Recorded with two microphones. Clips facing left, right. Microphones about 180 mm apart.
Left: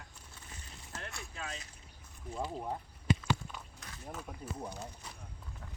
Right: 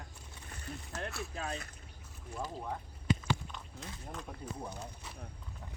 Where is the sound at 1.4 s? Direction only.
55° right (ahead or behind).